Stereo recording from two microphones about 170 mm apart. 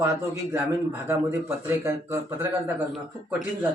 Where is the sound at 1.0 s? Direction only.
15° right (ahead or behind).